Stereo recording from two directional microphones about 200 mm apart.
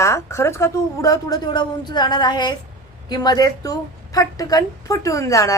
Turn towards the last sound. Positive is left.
turn(degrees=15)  # may be behind; listen again after turning